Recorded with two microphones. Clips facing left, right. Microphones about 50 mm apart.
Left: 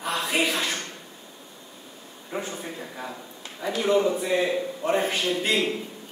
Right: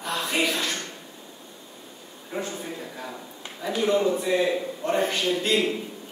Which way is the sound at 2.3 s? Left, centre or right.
Centre.